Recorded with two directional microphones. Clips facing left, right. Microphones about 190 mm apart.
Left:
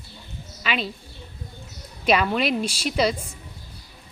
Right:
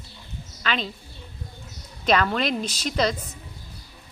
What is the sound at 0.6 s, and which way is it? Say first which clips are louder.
Speech: left 1 dB; 5° left (ahead or behind).